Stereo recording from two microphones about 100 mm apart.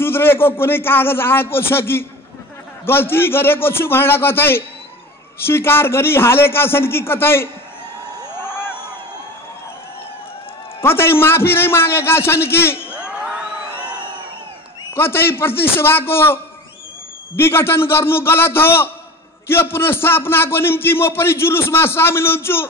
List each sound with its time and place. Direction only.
0.0 s a man's voice: 25° left (ahead or behind)
8.5 s a sound: 20° left (ahead or behind)
10.8 s a man's voice: 25° left (ahead or behind)
13.0 s crowd: 10° right (ahead or behind)
15.0 s a man's voice: 25° left (ahead or behind)
17.4 s a man's voice: 25° left (ahead or behind)